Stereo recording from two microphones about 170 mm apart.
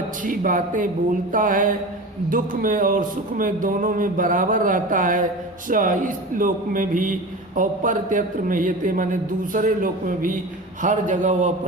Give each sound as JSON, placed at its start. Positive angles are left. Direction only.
{"t": 0.3, "sound": "speech", "side_deg": -50}